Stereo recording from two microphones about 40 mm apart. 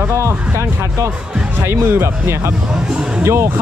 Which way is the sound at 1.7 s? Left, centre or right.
Right.